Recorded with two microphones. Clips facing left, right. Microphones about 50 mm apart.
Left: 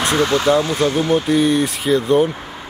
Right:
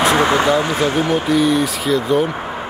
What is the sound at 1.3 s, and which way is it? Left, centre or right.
Speech, centre.